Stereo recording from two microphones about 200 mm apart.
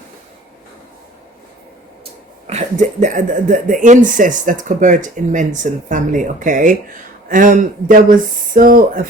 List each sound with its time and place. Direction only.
2.5 s speech: 35° right (ahead or behind)